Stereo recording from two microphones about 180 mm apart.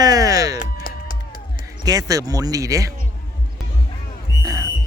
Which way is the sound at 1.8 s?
20° right (ahead or behind).